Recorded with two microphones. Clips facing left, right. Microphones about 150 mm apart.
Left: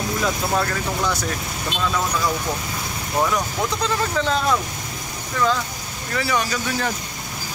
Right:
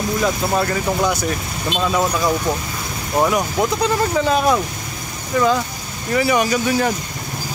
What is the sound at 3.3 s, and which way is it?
Speech, 10° right (ahead or behind).